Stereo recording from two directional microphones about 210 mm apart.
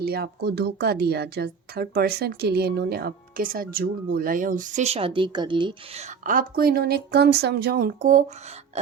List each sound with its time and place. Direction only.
0.0 s a woman's voice: 50° right (ahead or behind)